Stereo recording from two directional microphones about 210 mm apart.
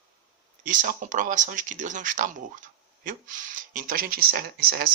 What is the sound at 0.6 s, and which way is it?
Speech, 40° right (ahead or behind).